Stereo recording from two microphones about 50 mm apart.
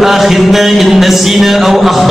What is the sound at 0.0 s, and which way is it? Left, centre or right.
A woman's voice, centre.